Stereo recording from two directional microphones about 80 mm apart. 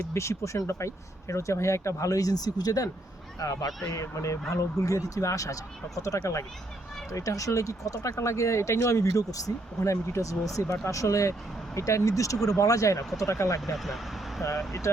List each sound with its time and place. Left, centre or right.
0.1 s speech: left
13.7 s speech: centre
14.7 s speech: left